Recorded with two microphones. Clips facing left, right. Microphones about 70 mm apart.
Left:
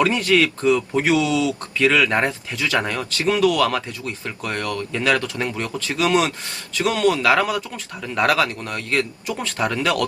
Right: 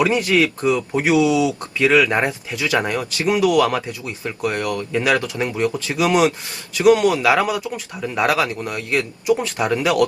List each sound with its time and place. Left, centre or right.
0.0 s speech: centre